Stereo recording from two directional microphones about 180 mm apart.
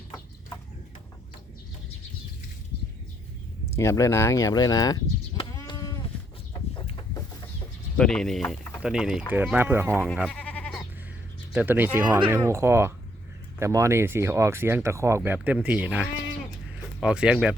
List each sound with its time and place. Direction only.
3.8 s speech: 15° left (ahead or behind)
5.4 s sheep: 25° left (ahead or behind)
6.5 s chicken: 25° left (ahead or behind)
7.9 s speech: 5° left (ahead or behind); by 10.0 s 10° right (ahead or behind)
10.2 s sheep: 5° left (ahead or behind)
11.5 s speech: 10° right (ahead or behind)
12.0 s speech: 25° right (ahead or behind); by 17.5 s 5° right (ahead or behind)